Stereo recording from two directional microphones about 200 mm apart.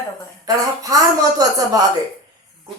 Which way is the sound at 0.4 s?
20° right (ahead or behind).